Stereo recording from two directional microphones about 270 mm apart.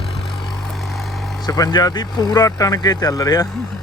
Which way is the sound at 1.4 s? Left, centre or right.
Centre.